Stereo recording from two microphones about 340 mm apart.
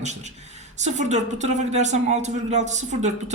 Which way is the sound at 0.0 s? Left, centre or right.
Centre.